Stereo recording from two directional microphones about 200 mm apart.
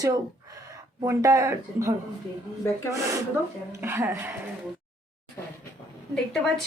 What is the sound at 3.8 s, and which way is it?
Speech, 10° right (ahead or behind).